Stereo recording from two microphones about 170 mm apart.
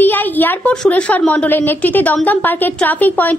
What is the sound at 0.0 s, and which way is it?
A woman's voice, 10° left (ahead or behind).